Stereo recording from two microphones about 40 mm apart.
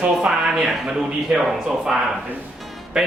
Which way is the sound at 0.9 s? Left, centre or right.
Right.